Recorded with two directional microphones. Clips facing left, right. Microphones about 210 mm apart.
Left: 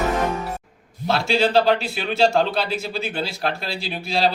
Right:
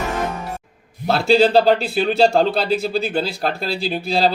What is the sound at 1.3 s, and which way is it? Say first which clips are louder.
Speech: right 5 dB; 35° right (ahead or behind).